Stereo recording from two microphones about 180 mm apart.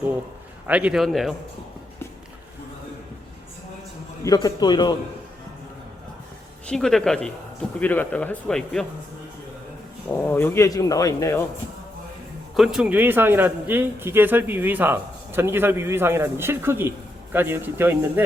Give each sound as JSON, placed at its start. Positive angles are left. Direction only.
{"t": 0.7, "sound": "speech", "side_deg": -5}
{"t": 4.2, "sound": "a man's voice", "side_deg": 20}
{"t": 6.7, "sound": "speech", "side_deg": 5}
{"t": 10.2, "sound": "speech", "side_deg": 15}
{"t": 12.5, "sound": "a man's voice", "side_deg": -5}